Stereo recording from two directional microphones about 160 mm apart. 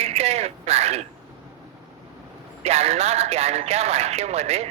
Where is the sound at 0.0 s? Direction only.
40° right (ahead or behind).